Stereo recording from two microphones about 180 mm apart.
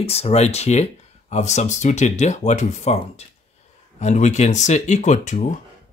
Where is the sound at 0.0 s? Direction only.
35° left (ahead or behind).